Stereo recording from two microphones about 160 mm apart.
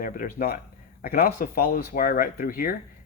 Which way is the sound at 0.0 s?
60° left (ahead or behind).